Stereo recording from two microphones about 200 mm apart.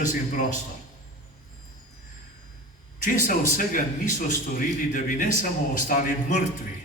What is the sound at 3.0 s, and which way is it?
A man's voice, 40° left (ahead or behind).